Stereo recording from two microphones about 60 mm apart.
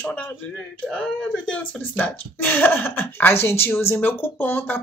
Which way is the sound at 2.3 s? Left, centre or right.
Left.